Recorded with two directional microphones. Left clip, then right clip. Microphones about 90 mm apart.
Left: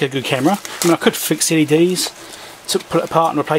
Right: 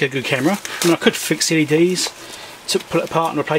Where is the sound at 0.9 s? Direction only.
20° left (ahead or behind).